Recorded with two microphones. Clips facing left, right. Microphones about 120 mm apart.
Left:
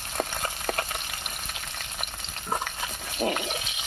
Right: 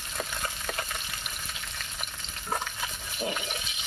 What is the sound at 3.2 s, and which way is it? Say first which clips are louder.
Water: left 5 dB; 65° left (ahead or behind).